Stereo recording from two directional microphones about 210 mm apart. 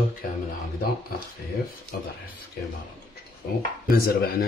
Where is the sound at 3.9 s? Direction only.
45° left (ahead or behind).